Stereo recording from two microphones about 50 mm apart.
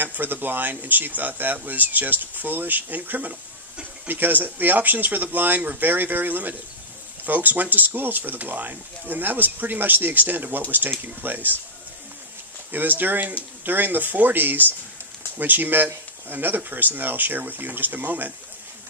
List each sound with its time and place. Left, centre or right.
0.0 s speech: right
12.7 s speech: right